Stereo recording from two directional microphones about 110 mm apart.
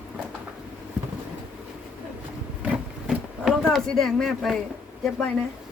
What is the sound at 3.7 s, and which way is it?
Speech, 5° left (ahead or behind).